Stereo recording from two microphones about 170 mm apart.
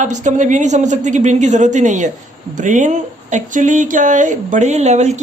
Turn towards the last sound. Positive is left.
turn(degrees=-40)  # may be behind; listen again after turning